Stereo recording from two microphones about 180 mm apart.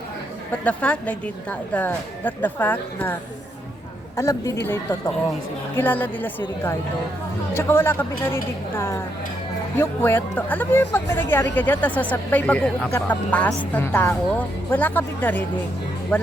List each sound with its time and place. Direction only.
0.6 s a woman's voice: 5° left (ahead or behind)
4.2 s a woman's voice: 15° left (ahead or behind)
7.5 s a woman's voice: 15° left (ahead or behind)
9.7 s a woman's voice: 10° left (ahead or behind)